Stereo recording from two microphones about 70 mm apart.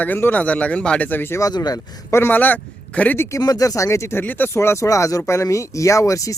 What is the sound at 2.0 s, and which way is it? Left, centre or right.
Speech, left.